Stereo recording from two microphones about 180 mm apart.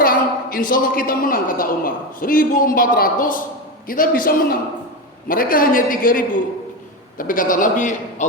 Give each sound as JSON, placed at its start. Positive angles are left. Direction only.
{"t": 0.0, "sound": "a man's voice", "side_deg": 50}